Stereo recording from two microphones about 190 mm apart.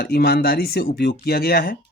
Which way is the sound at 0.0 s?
55° left (ahead or behind).